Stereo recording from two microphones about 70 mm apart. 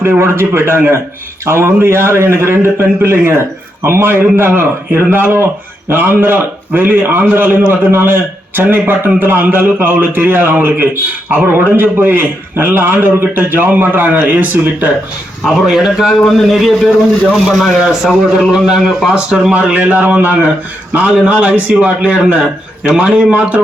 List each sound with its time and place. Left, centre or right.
0.0 s a man's voice: right
15.4 s speech: centre
18.5 s speech: centre